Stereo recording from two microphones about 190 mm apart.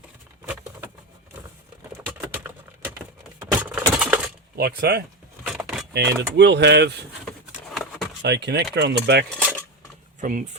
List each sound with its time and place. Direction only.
0.4 s patter: 10° right (ahead or behind)
2.0 s typing: 10° right (ahead or behind)
3.6 s a sound: 5° right (ahead or behind)
4.5 s speech: 55° right (ahead or behind)
5.4 s a sound: 5° right (ahead or behind)
5.9 s speech: 65° right (ahead or behind)
7.3 s a sound: centre (ahead or behind)
8.2 s speech: 65° right (ahead or behind)
10.2 s speech: 45° right (ahead or behind)